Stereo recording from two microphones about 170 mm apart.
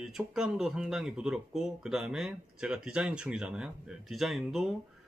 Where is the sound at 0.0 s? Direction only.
Centre (ahead or behind).